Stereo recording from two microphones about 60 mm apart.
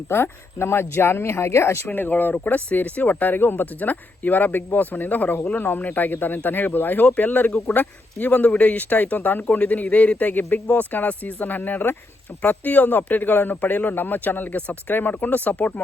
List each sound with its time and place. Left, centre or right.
0.1 s speech: left
1.9 s a man's voice: left